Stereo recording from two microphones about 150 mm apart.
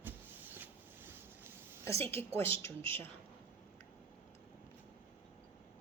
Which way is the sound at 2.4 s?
15° left (ahead or behind).